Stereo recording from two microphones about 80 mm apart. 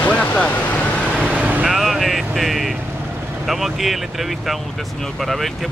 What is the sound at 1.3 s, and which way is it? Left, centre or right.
Vehicle, centre.